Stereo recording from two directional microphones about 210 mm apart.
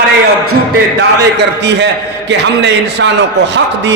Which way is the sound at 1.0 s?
55° right (ahead or behind).